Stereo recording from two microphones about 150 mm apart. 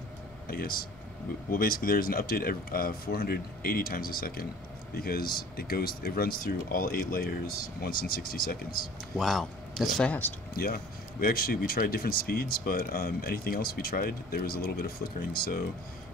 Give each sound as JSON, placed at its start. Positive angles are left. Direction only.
{"t": 0.5, "sound": "speech", "side_deg": 80}
{"t": 9.2, "sound": "speech", "side_deg": 0}
{"t": 10.5, "sound": "speech", "side_deg": 80}